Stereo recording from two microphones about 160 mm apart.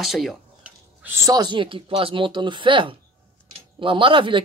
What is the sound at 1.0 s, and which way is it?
Speech, 20° right (ahead or behind).